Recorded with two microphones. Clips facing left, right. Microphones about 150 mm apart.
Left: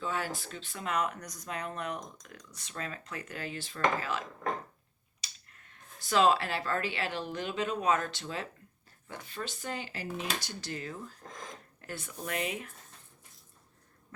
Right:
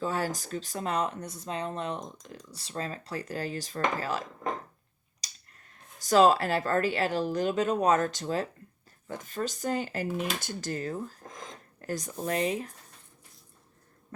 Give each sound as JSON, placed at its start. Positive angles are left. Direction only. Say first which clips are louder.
{"t": 0.0, "sound": "speech", "louder": "right 4 dB", "side_deg": -40}
{"t": 5.2, "sound": "speech", "louder": "even", "side_deg": -40}